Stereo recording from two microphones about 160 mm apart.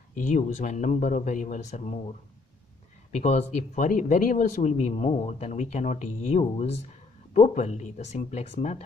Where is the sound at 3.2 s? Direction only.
45° left (ahead or behind).